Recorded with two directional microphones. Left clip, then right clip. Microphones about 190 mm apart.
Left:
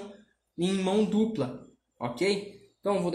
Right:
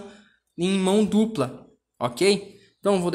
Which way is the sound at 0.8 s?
40° right (ahead or behind).